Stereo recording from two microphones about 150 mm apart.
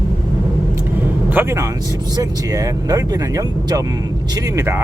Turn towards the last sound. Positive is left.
turn(degrees=-20)  # may be behind; listen again after turning